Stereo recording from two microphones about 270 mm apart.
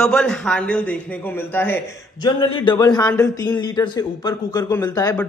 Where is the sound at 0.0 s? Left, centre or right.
Centre.